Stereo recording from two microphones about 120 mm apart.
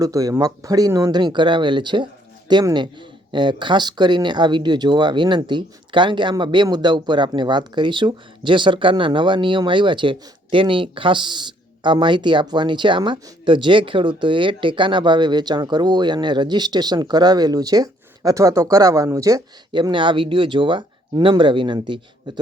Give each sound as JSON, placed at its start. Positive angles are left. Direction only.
{"t": 0.0, "sound": "speech", "side_deg": -30}
{"t": 19.7, "sound": "speech", "side_deg": -40}